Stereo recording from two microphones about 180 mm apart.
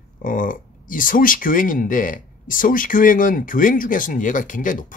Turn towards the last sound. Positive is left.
turn(degrees=45)  # may be behind; listen again after turning